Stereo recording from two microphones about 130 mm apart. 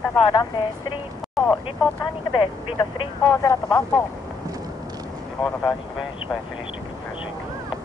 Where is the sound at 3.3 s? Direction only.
30° left (ahead or behind).